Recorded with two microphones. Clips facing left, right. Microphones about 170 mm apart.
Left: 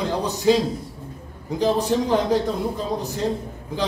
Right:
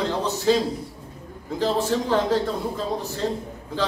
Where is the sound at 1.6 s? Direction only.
15° left (ahead or behind).